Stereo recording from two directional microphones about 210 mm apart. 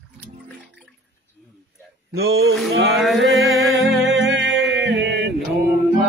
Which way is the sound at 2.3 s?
70° right (ahead or behind).